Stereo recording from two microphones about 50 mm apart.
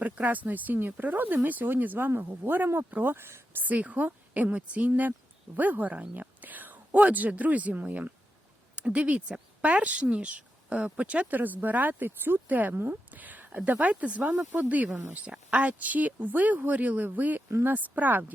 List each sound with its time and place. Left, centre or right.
0.0 s speech: right
3.6 s a woman's voice: right
11.3 s speech: right
12.5 s speech: right
12.9 s a sound: right
13.7 s a woman's voice: right